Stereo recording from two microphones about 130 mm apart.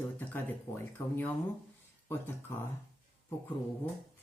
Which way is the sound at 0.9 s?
15° left (ahead or behind).